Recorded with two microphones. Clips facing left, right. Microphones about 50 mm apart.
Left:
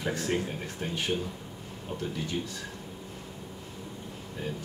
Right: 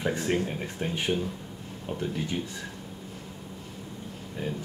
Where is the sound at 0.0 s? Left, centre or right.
Centre.